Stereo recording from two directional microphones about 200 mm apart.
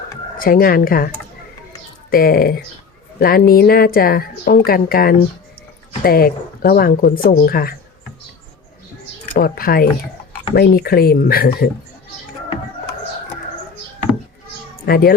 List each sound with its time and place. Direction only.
0.3 s a woman's voice: 45° left (ahead or behind)
9.4 s a woman's voice: 45° left (ahead or behind)
14.8 s a woman's voice: 50° left (ahead or behind)